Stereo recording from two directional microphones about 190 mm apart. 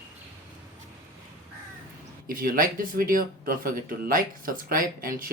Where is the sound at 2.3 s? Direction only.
50° right (ahead or behind).